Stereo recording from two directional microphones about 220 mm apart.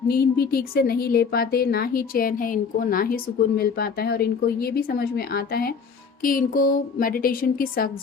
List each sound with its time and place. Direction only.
0.1 s a woman's voice: 45° left (ahead or behind)